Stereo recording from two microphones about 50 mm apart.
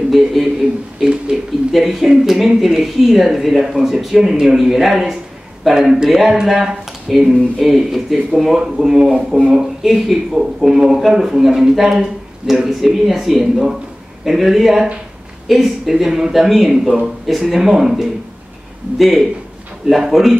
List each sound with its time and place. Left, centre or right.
0.1 s a man's voice: centre
0.9 s a sound: centre
1.3 s speech: centre